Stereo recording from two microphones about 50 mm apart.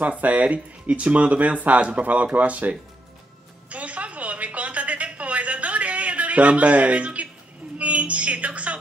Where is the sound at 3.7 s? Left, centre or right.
Right.